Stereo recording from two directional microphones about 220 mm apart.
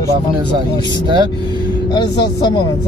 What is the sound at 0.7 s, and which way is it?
Speech, 20° left (ahead or behind).